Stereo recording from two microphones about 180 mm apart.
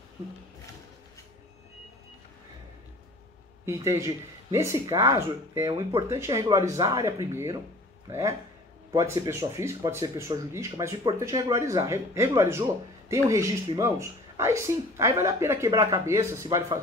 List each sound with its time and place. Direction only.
3.6 s speech: 15° right (ahead or behind)